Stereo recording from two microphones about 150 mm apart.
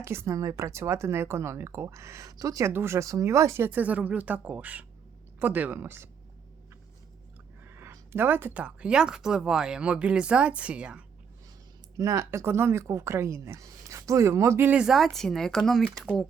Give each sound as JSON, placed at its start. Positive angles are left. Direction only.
{"t": 0.0, "sound": "speech", "side_deg": -15}
{"t": 7.6, "sound": "speech", "side_deg": -15}
{"t": 11.9, "sound": "speech", "side_deg": -20}